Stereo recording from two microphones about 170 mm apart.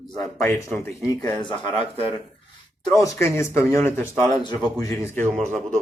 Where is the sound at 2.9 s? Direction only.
20° left (ahead or behind).